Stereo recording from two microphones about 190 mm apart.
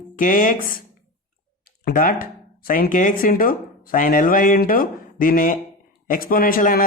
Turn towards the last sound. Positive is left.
turn(degrees=50)  # may be behind; listen again after turning